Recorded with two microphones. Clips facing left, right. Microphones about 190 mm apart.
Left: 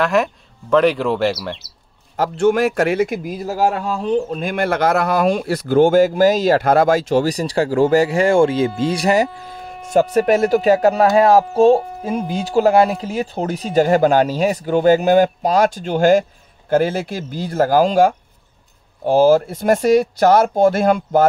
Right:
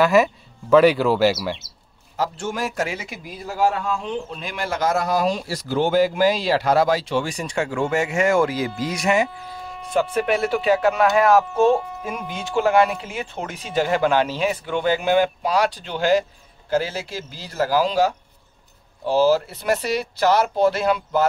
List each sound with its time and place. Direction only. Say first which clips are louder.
0.0 s speech: right 1 dB; 5° right (ahead or behind)
2.1 s a man's voice: left 10 dB; 55° left (ahead or behind)